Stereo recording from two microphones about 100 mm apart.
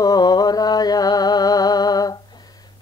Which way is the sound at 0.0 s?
40° left (ahead or behind).